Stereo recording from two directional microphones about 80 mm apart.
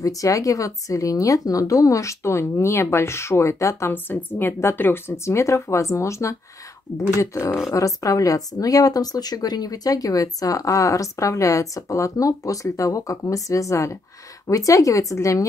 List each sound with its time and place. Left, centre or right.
0.0 s a woman's voice: left
3.9 s a woman's voice: left